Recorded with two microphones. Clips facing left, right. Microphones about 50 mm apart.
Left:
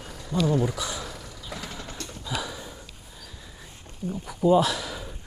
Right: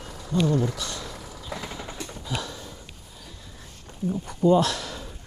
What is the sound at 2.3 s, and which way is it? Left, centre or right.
Sniff, centre.